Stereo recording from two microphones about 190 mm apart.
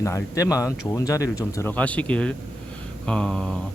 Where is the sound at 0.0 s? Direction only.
15° left (ahead or behind).